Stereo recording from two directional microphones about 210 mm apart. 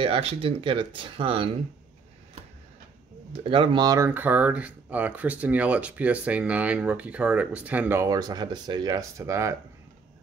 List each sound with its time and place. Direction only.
0.0 s speech: 25° right (ahead or behind)
3.4 s speech: 25° right (ahead or behind)